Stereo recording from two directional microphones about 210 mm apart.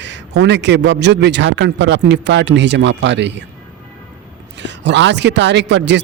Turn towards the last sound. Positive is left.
turn(degrees=-55)  # may be behind; listen again after turning